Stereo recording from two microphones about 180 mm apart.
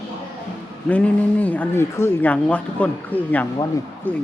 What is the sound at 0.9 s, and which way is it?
Speech, 10° left (ahead or behind).